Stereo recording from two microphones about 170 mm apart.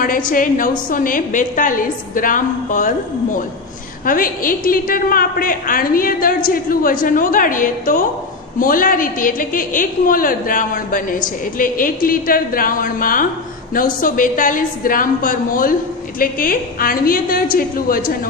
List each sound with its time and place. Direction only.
0.0 s a woman's voice: 55° left (ahead or behind)
4.0 s a woman's voice: 55° left (ahead or behind)